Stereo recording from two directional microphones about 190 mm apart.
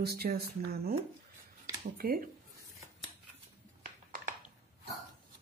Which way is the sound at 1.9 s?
50° right (ahead or behind).